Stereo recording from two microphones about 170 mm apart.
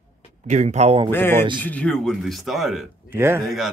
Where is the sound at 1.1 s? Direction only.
15° left (ahead or behind).